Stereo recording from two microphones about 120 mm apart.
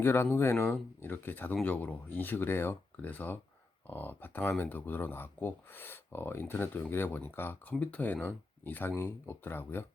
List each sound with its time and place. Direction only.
0.0 s speech: 20° left (ahead or behind)